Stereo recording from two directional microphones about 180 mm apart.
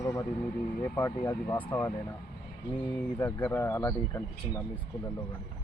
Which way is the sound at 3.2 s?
10° left (ahead or behind).